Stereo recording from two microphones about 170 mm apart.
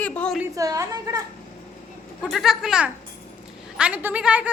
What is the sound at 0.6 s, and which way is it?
Speech, 20° right (ahead or behind).